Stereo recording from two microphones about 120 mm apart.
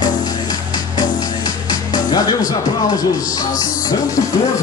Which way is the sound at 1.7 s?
35° left (ahead or behind).